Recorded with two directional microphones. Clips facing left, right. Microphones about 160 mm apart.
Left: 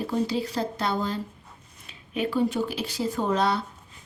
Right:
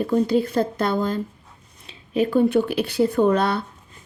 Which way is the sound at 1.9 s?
25° right (ahead or behind).